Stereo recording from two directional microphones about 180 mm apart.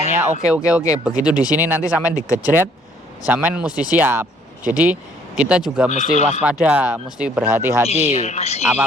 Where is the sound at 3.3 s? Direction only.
5° right (ahead or behind).